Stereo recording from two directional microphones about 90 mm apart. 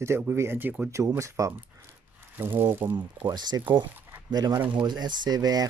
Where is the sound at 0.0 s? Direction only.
30° right (ahead or behind).